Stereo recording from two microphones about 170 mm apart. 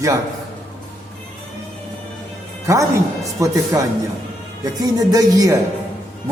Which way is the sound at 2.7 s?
20° right (ahead or behind).